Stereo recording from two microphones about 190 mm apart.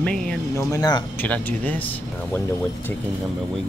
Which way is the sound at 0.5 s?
20° left (ahead or behind).